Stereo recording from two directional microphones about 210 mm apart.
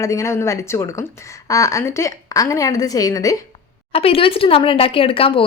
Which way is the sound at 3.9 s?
25° left (ahead or behind).